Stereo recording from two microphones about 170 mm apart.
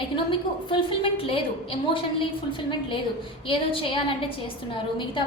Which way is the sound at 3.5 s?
30° left (ahead or behind).